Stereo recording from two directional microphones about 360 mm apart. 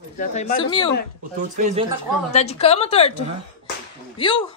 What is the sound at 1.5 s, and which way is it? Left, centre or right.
Speech, centre.